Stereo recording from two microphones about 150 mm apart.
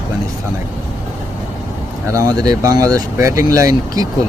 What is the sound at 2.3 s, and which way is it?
Speech, 25° right (ahead or behind).